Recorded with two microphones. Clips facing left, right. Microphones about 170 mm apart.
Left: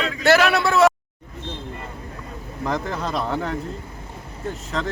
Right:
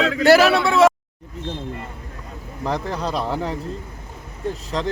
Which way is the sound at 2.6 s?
30° right (ahead or behind).